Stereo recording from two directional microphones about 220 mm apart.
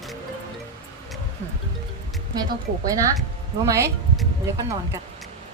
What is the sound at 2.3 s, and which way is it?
A woman's voice, 15° right (ahead or behind).